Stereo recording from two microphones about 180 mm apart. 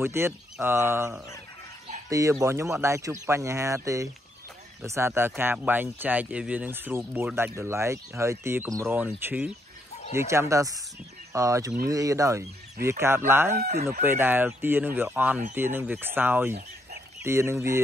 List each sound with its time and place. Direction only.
0.0 s speech: 15° right (ahead or behind)
13.5 s speech: 45° right (ahead or behind)
13.7 s speech: 55° right (ahead or behind)
14.0 s speech: 10° right (ahead or behind)